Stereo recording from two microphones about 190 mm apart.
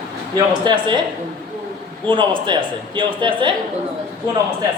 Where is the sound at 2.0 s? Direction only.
25° right (ahead or behind).